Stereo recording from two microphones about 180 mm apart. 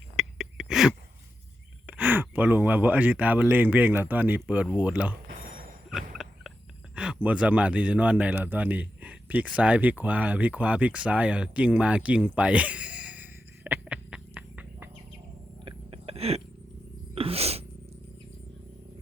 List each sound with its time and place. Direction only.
0.2 s a sound: centre (ahead or behind)
1.9 s speech: 10° right (ahead or behind)
5.9 s turkey: centre (ahead or behind)
6.9 s a man's voice: 5° right (ahead or behind)
15.6 s a sound: 30° right (ahead or behind)
17.2 s sneeze: 35° right (ahead or behind)